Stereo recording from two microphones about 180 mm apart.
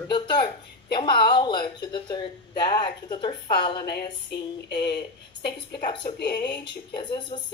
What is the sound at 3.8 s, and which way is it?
Speech, 65° left (ahead or behind).